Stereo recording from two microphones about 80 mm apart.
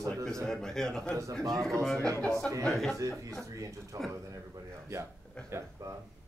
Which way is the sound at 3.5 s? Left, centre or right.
Right.